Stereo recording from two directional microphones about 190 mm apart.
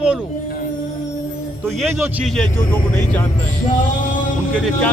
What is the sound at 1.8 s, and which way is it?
Speech, centre (ahead or behind).